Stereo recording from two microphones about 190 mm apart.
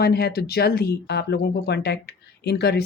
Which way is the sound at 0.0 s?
55° left (ahead or behind).